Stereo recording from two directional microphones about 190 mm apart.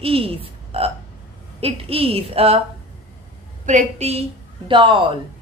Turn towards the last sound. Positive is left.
turn(degrees=-25)  # may be behind; listen again after turning